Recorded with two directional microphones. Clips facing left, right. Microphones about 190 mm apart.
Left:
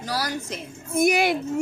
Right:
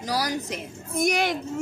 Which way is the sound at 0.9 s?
5° left (ahead or behind).